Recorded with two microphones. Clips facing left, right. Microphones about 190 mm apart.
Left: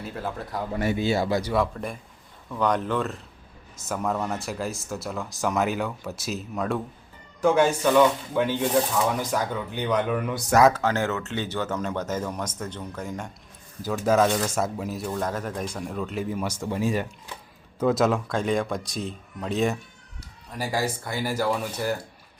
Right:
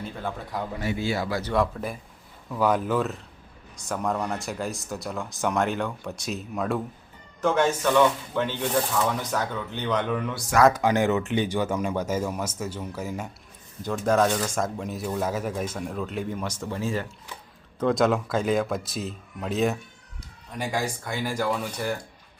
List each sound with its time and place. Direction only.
0.0 s speech: 5° left (ahead or behind)
0.9 s speech: 25° left (ahead or behind)
1.5 s speech: centre (ahead or behind)
7.4 s speech: 10° left (ahead or behind)
10.7 s speech: 15° right (ahead or behind)
13.8 s speech: 5° left (ahead or behind)
17.7 s speech: 5° left (ahead or behind)